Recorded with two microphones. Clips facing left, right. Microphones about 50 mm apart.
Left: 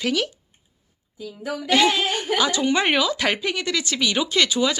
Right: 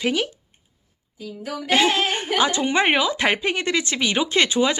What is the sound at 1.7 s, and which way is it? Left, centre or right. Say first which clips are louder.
A woman's voice: even; right.